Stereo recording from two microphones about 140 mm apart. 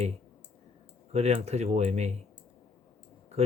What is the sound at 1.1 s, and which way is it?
Speech, 50° right (ahead or behind).